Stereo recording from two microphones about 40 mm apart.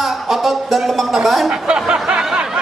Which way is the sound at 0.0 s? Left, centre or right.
Centre.